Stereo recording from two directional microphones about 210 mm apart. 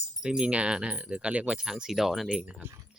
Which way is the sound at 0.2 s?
5° right (ahead or behind).